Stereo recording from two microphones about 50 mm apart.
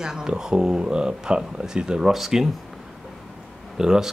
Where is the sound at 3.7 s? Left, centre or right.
Centre.